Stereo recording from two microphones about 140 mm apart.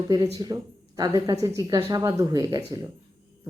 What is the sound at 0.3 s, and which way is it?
Speech, 30° right (ahead or behind).